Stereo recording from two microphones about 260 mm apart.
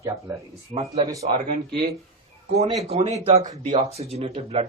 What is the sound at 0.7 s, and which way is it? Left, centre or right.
Speech, right.